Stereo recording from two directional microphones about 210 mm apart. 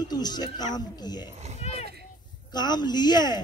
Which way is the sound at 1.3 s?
30° right (ahead or behind).